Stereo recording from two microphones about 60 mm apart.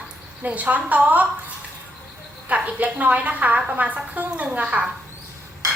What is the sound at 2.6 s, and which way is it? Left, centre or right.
A woman's voice, right.